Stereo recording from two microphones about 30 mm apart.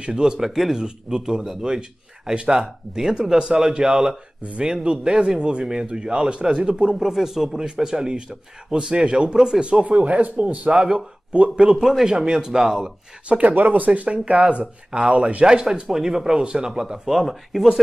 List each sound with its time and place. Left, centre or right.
0.1 s speech: centre
4.4 s speech: right
4.8 s speech: right
7.0 s speech: centre
7.5 s speech: right
9.6 s speech: right
10.7 s speech: right
11.7 s a man's voice: centre
12.1 s speech: right
13.4 s speech: right
15.4 s speech: right
17.1 s speech: centre